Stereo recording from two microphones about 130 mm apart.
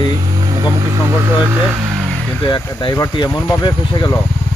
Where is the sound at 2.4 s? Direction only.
40° left (ahead or behind).